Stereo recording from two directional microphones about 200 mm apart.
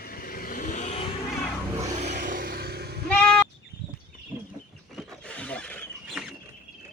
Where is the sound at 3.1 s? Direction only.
5° left (ahead or behind).